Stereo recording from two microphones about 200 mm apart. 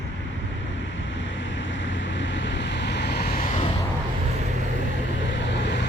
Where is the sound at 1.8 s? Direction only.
65° left (ahead or behind).